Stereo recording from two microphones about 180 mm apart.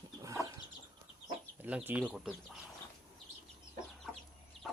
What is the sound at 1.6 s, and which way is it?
Speech, 10° right (ahead or behind).